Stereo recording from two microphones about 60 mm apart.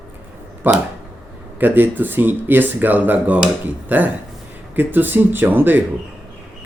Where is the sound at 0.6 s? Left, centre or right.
Right.